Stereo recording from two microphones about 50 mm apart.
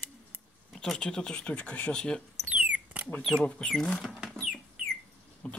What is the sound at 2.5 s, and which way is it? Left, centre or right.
Rodents, right.